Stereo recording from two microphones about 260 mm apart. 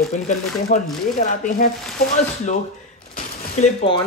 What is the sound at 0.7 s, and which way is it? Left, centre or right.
Speech, left.